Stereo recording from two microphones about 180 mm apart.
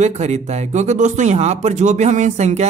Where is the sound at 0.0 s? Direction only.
40° right (ahead or behind).